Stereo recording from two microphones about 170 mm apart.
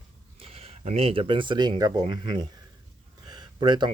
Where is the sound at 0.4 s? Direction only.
35° right (ahead or behind).